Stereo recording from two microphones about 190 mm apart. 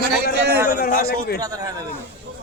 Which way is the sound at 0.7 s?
45° left (ahead or behind).